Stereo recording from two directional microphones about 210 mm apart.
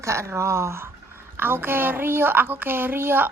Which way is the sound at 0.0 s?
15° right (ahead or behind).